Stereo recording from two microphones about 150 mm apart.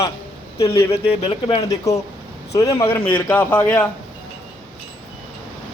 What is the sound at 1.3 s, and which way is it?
Speech, 35° left (ahead or behind).